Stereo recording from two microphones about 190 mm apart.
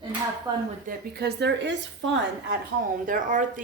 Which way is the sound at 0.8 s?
60° right (ahead or behind).